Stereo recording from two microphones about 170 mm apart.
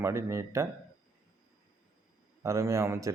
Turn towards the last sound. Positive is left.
turn(degrees=-15)  # may be behind; listen again after turning